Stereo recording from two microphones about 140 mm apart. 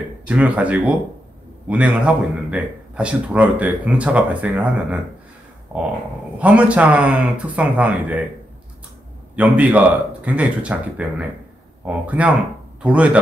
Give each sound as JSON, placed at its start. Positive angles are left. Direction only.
{"t": 0.3, "sound": "speech", "side_deg": -10}
{"t": 9.3, "sound": "speech", "side_deg": -10}